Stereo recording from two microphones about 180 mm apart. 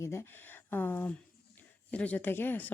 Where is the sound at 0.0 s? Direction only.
15° left (ahead or behind).